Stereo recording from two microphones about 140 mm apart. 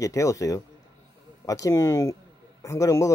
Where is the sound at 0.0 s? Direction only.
25° left (ahead or behind).